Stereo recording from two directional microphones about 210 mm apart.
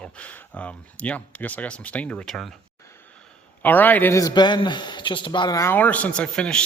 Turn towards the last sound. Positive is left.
turn(degrees=5)  # may be behind; listen again after turning